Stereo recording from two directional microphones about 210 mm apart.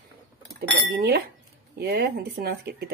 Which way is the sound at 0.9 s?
50° right (ahead or behind).